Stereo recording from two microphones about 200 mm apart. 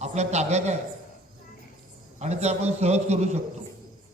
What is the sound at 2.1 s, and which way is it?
A man's voice, 35° right (ahead or behind).